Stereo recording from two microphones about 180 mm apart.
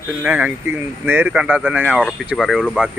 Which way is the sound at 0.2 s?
10° right (ahead or behind).